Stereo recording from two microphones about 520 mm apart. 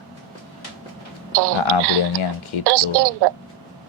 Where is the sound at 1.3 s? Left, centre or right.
Right.